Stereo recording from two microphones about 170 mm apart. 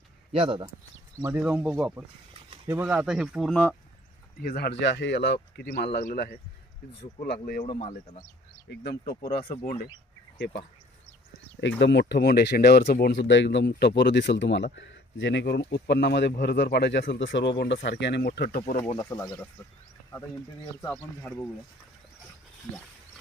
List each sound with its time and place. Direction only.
0.3 s speech: 30° right (ahead or behind)
1.2 s speech: 10° right (ahead or behind); by 3.8 s 5° left (ahead or behind)
4.4 s speech: 65° left (ahead or behind)
7.4 s speech: 60° left (ahead or behind)
7.7 s speech: 30° left (ahead or behind)
8.7 s speech: 70° left (ahead or behind)
11.8 s speech: 90° left; by 18.6 s 65° left (ahead or behind)
18.9 s speech: 20° left (ahead or behind)
20.9 s speech: 10° left (ahead or behind)